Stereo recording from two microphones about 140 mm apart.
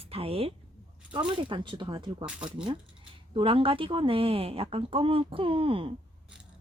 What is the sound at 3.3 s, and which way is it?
Speech, 40° right (ahead or behind).